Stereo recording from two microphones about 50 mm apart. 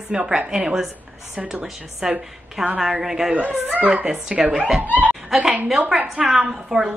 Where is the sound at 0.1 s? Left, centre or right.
Centre.